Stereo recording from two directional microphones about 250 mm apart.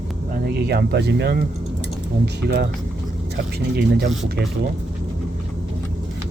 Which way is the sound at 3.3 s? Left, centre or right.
Right.